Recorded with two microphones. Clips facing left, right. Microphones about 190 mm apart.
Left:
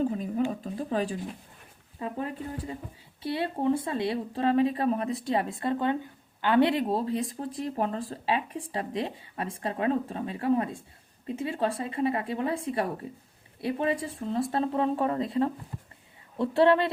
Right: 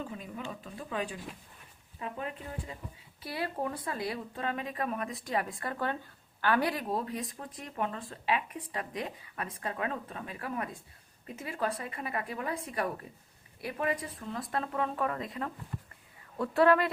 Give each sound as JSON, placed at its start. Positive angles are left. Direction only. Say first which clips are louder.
{"t": 0.0, "sound": "speech", "louder": "left 12 dB", "side_deg": 40}